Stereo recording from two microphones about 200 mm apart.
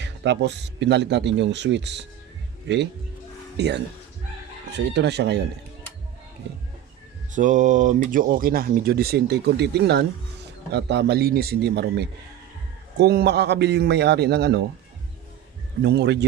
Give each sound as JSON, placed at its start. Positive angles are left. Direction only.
{"t": 0.0, "sound": "speech", "side_deg": -60}
{"t": 7.3, "sound": "speech", "side_deg": -40}
{"t": 15.8, "sound": "speech", "side_deg": -55}